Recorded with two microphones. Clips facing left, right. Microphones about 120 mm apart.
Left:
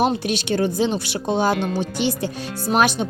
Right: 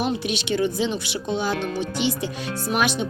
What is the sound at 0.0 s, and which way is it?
Speech, 40° left (ahead or behind).